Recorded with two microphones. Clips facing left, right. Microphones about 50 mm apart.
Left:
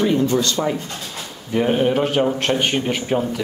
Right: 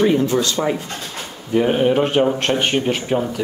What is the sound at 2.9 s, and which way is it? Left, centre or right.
Speech, centre.